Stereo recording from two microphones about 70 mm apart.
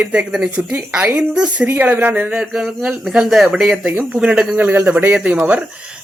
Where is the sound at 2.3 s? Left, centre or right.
Centre; by 5.1 s right.